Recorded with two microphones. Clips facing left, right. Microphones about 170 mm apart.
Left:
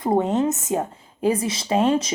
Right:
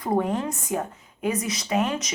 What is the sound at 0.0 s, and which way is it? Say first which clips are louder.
A woman's voice: left 5 dB; 25° left (ahead or behind).